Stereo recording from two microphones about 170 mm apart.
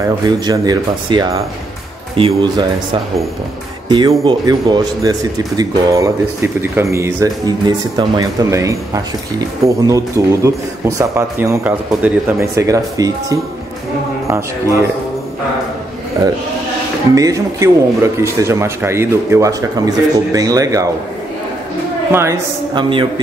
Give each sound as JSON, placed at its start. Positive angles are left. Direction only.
{"t": 0.0, "sound": "a man's voice", "side_deg": -25}
{"t": 17.1, "sound": "a man's voice", "side_deg": -20}
{"t": 22.1, "sound": "a man's voice", "side_deg": -15}
{"t": 22.8, "sound": "a man's voice", "side_deg": -30}